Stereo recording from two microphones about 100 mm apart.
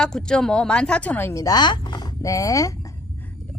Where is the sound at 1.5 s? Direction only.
50° left (ahead or behind).